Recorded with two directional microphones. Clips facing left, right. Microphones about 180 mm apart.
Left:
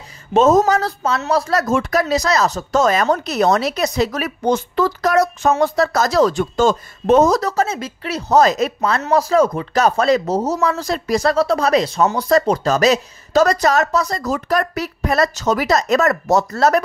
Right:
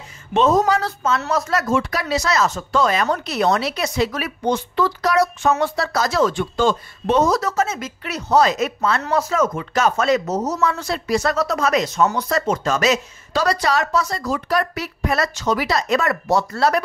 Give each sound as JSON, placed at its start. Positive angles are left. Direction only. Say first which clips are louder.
{"t": 0.3, "sound": "speech", "louder": "left 3 dB", "side_deg": 45}